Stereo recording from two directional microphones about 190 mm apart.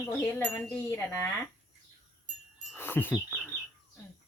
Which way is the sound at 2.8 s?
10° left (ahead or behind).